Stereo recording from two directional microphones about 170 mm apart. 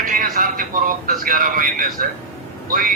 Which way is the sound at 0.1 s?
55° right (ahead or behind).